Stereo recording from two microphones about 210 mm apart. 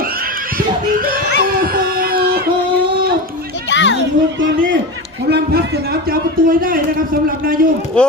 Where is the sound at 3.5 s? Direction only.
60° left (ahead or behind).